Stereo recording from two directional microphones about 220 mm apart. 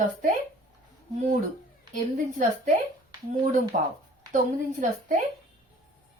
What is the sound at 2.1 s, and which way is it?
Speech, 35° right (ahead or behind).